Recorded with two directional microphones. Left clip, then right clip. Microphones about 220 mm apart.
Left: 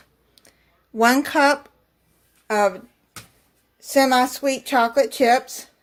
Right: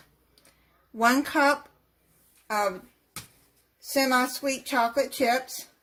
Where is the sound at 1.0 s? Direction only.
35° left (ahead or behind).